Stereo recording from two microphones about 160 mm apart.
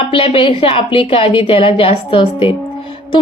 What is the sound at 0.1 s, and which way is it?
A woman's voice, 35° left (ahead or behind).